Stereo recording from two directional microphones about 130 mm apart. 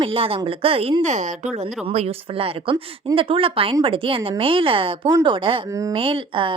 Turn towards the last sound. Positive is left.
turn(degrees=-40)  # may be behind; listen again after turning